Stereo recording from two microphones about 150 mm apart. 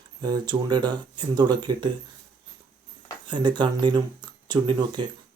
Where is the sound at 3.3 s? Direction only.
30° right (ahead or behind).